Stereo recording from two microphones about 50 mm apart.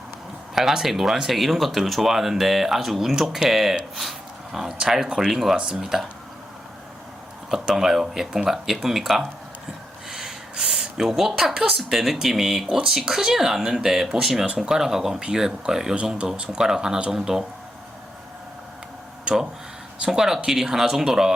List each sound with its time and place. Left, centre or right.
0.5 s a woman's voice: centre
5.5 s a woman's voice: centre
7.6 s a woman's voice: centre
20.1 s a woman's voice: centre